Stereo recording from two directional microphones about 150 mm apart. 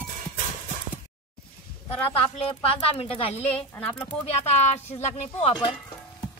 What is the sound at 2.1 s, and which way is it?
A woman's voice, 40° left (ahead or behind).